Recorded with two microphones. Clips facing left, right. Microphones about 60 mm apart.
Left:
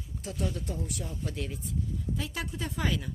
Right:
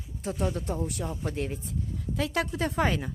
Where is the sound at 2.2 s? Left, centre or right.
Right.